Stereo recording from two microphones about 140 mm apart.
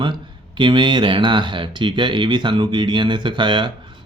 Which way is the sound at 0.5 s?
35° right (ahead or behind).